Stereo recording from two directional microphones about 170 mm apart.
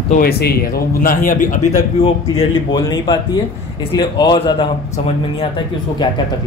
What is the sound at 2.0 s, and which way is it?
A man's voice, 30° left (ahead or behind).